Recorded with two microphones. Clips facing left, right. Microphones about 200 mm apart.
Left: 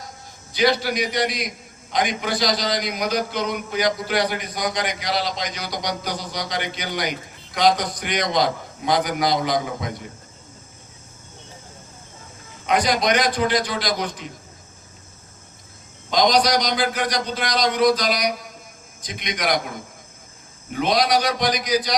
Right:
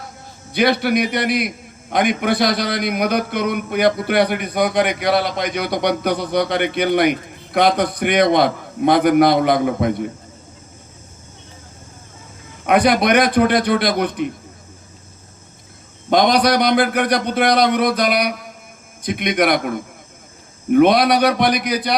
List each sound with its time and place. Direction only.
0.5 s a man's voice: 60° right (ahead or behind)
12.6 s a man's voice: 60° right (ahead or behind)
16.0 s a man's voice: 60° right (ahead or behind)